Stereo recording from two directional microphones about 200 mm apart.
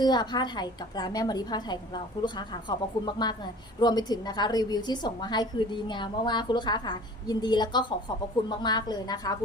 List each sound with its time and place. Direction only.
0.0 s a woman's voice: 20° left (ahead or behind)